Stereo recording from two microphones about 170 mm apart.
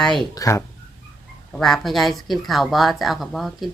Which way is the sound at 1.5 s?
Centre (ahead or behind).